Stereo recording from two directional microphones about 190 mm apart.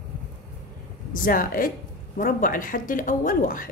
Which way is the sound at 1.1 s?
45° left (ahead or behind).